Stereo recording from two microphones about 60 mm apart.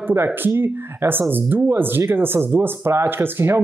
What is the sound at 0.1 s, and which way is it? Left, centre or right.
Speech, right.